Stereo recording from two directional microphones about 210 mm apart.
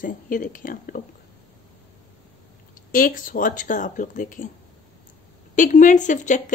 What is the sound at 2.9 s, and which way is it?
Speech, 40° left (ahead or behind).